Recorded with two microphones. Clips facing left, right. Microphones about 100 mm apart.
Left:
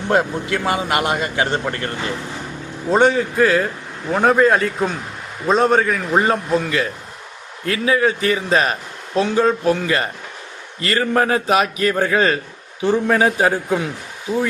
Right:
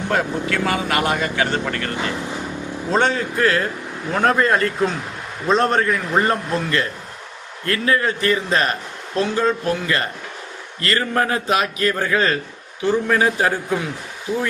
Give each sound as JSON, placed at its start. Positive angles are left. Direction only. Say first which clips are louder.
{"t": 0.1, "sound": "a man's voice", "louder": "left 4 dB", "side_deg": 20}